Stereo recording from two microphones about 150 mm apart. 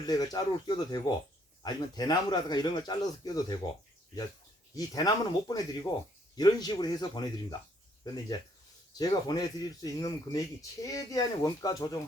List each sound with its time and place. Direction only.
0.1 s speech: 25° left (ahead or behind)
4.7 s speech: 25° left (ahead or behind)